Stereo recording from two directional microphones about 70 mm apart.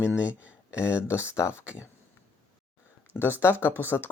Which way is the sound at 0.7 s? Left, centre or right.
Left.